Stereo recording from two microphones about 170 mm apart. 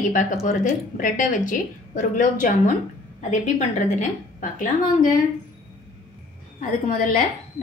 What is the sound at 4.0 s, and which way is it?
A woman's voice, 50° left (ahead or behind).